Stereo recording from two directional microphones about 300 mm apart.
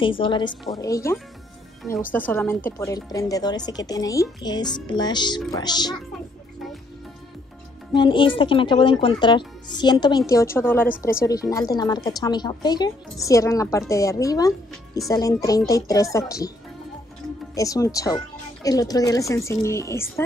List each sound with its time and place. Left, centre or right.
0.0 s a woman's voice: centre
8.0 s a woman's voice: centre
17.6 s a woman's voice: centre